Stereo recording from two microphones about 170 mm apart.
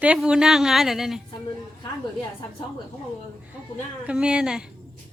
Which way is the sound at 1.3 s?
30° left (ahead or behind).